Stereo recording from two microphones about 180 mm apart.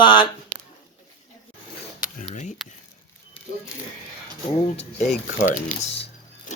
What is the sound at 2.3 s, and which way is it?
Speech, 40° left (ahead or behind).